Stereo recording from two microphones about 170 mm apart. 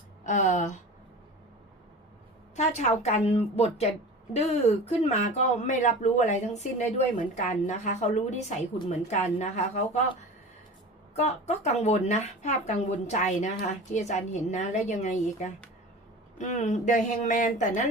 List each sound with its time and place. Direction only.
0.3 s speech: 45° left (ahead or behind)
2.6 s a woman's voice: 40° left (ahead or behind)
11.1 s speech: 40° left (ahead or behind)